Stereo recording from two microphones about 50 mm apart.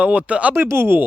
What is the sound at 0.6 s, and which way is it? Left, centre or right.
Speech, right.